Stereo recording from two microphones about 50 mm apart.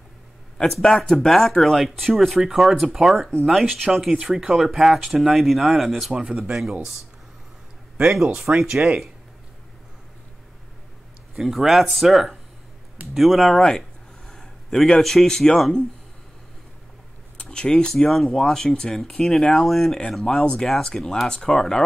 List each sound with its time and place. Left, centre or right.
0.7 s speech: centre
0.9 s speech: centre
1.3 s speech: centre
6.1 s speech: centre
8.3 s speech: centre
11.3 s speech: centre
13.6 s a sound: centre
15.2 s speech: centre
17.4 s speech: centre